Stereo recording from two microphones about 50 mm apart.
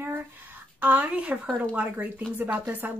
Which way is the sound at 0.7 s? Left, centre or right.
Right.